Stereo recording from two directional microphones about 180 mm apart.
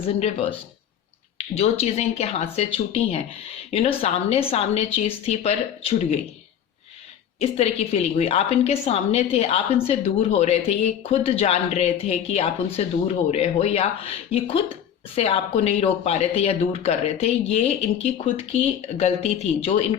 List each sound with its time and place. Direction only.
0.1 s a woman's voice: 35° left (ahead or behind)
7.3 s a woman's voice: 35° left (ahead or behind)